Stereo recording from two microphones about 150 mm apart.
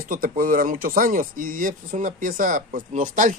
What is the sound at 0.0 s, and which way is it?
Speech, 70° right (ahead or behind).